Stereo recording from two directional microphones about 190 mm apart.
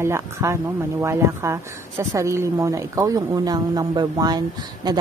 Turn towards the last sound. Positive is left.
turn(degrees=-20)  # may be behind; listen again after turning